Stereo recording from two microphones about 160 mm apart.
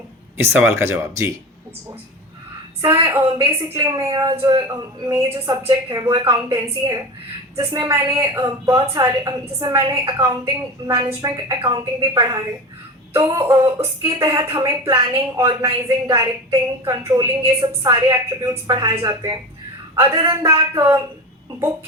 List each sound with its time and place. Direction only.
0.3 s speech: 15° right (ahead or behind)
2.8 s a woman's voice: 20° right (ahead or behind)